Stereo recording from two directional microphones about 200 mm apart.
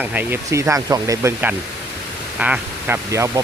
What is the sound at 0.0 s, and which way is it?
Speech, 10° right (ahead or behind).